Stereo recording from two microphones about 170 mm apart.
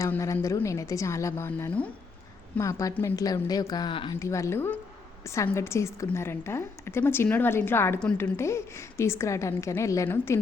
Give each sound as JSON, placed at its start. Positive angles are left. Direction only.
{"t": 0.0, "sound": "a woman's voice", "side_deg": 20}
{"t": 4.2, "sound": "a woman's voice", "side_deg": 15}